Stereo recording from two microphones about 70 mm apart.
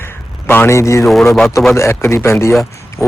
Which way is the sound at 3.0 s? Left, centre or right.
Left.